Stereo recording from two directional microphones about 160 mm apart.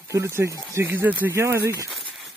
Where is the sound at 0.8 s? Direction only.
10° right (ahead or behind).